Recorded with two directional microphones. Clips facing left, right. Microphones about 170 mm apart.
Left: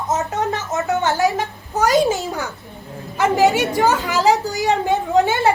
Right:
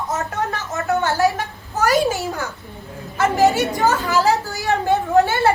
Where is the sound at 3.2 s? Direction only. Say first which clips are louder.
Left 1 dB; 15° left (ahead or behind).